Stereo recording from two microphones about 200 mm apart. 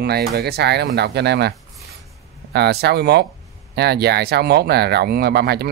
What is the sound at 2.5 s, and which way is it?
Speech, 55° right (ahead or behind).